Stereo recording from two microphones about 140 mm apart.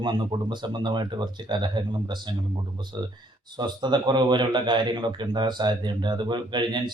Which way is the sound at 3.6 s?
30° right (ahead or behind).